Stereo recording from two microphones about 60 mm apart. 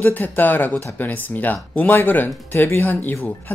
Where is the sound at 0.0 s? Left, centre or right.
Left.